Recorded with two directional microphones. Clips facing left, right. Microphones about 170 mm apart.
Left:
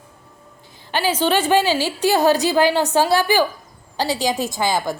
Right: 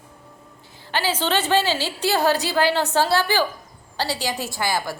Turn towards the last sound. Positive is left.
turn(degrees=20)  # may be behind; listen again after turning